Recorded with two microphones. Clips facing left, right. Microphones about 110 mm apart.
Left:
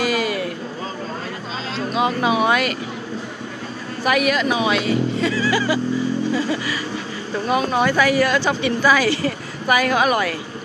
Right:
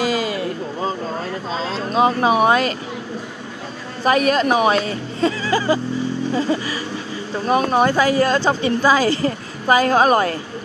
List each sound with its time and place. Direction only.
0.0 s a sound: 25° right (ahead or behind)
2.0 s a woman's voice: 30° right (ahead or behind)
4.0 s a woman's voice: 35° right (ahead or behind)
5.3 s a sound: 25° right (ahead or behind)
7.4 s a woman's voice: 40° right (ahead or behind)
7.9 s a woman's voice: 25° right (ahead or behind)